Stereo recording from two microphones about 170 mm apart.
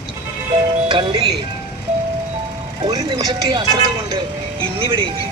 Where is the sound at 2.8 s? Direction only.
25° right (ahead or behind).